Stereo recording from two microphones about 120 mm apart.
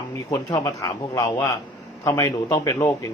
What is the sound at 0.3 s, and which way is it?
Speech, 30° left (ahead or behind).